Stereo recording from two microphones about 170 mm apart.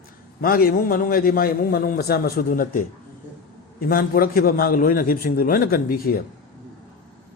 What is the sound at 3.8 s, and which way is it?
A man's voice, 60° left (ahead or behind).